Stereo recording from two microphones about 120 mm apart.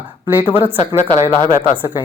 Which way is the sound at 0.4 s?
15° right (ahead or behind).